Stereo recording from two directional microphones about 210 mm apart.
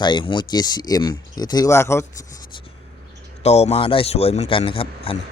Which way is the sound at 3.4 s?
30° left (ahead or behind).